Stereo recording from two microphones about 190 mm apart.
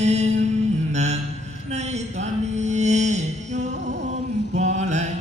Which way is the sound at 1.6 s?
35° right (ahead or behind).